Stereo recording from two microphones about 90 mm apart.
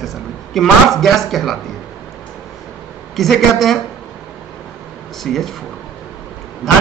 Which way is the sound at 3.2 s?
Centre (ahead or behind).